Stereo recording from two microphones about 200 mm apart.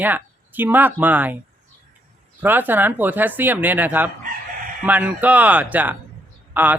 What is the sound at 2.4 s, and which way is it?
A man's voice, 10° right (ahead or behind).